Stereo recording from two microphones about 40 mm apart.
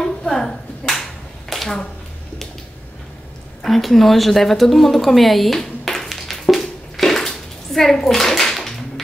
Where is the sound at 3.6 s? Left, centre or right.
Centre.